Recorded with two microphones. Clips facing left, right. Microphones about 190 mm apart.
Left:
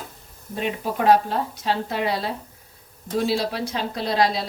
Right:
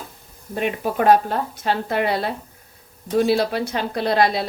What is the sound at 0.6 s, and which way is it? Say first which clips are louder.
Speech: right 3 dB; 55° right (ahead or behind).